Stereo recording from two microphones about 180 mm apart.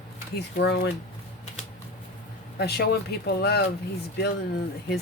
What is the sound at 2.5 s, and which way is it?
Speech, 65° left (ahead or behind).